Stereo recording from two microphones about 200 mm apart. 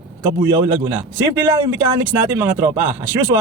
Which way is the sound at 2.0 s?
10° right (ahead or behind).